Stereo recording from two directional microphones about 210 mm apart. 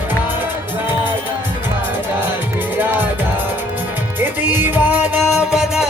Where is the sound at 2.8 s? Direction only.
10° right (ahead or behind).